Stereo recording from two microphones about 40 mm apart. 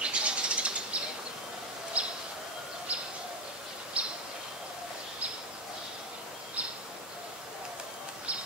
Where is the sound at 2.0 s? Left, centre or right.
Right.